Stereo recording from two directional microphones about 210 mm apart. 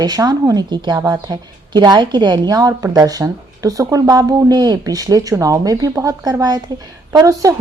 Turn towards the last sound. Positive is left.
turn(degrees=-15)  # may be behind; listen again after turning